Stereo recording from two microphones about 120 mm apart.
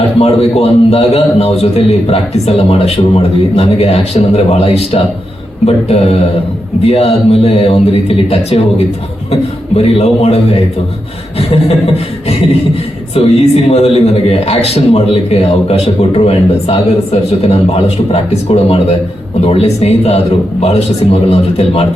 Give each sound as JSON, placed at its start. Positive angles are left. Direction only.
{"t": 0.2, "sound": "a man's voice", "side_deg": 60}
{"t": 13.2, "sound": "a man's voice", "side_deg": 55}